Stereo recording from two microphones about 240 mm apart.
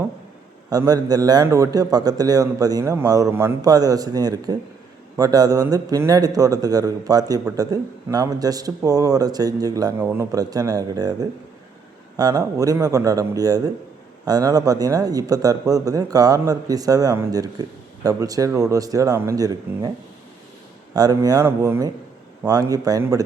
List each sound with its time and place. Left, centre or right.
0.7 s speech: centre
20.9 s speech: centre